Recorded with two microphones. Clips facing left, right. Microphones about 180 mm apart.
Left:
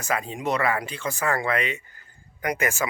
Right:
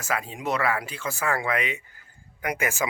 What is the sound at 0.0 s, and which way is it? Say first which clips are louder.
A man's voice: left 2 dB; 5° right (ahead or behind).